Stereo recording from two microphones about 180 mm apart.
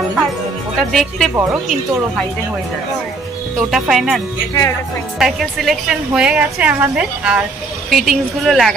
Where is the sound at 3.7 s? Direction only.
Centre (ahead or behind).